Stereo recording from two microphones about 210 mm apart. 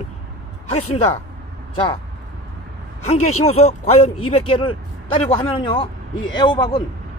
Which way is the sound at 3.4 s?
30° left (ahead or behind).